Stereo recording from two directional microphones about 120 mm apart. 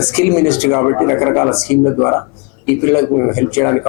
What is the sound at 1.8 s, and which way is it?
Speech, 20° left (ahead or behind).